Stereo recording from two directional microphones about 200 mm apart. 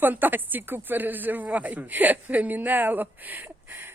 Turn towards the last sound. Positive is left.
turn(degrees=-10)  # may be behind; listen again after turning